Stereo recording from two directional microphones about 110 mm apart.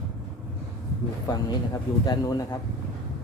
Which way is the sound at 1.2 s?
35° left (ahead or behind).